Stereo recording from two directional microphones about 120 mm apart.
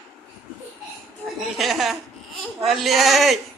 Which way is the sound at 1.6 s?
Centre (ahead or behind).